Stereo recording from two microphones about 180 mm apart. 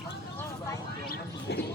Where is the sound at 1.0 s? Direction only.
60° left (ahead or behind).